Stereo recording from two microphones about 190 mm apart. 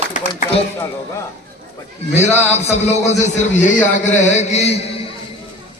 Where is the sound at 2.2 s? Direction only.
35° left (ahead or behind).